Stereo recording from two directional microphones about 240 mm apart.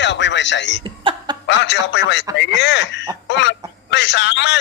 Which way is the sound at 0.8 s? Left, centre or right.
Centre.